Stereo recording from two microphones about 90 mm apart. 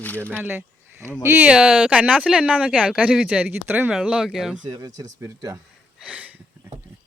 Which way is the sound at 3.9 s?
10° right (ahead or behind).